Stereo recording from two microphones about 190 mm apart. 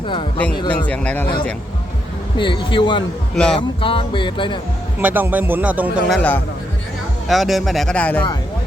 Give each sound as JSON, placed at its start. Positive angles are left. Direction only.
{"t": 0.7, "sound": "speech", "side_deg": 5}
{"t": 2.4, "sound": "speech", "side_deg": 25}
{"t": 3.3, "sound": "speech", "side_deg": 5}
{"t": 3.8, "sound": "speech", "side_deg": 30}
{"t": 4.9, "sound": "a man's voice", "side_deg": -10}
{"t": 6.1, "sound": "speech", "side_deg": 10}